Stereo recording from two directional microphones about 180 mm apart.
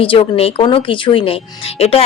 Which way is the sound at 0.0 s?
30° left (ahead or behind).